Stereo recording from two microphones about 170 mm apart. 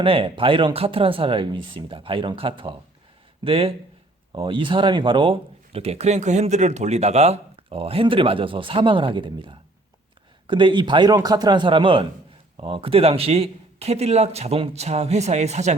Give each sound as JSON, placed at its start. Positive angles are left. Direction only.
{"t": 0.0, "sound": "a man's voice", "side_deg": -30}